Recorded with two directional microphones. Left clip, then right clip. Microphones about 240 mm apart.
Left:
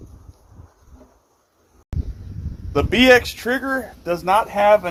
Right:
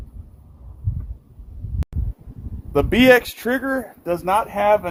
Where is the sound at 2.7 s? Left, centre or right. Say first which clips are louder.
Even; right.